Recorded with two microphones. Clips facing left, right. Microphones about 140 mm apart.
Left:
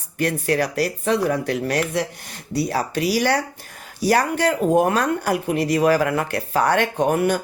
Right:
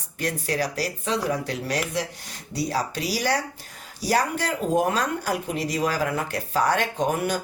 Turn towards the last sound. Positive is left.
turn(degrees=60)  # may be behind; listen again after turning